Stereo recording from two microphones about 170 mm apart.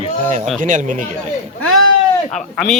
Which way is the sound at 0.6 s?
50° right (ahead or behind).